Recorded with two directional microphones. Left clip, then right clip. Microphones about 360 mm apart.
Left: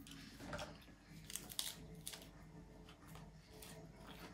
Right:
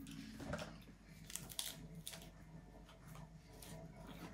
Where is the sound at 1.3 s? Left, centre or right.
Centre.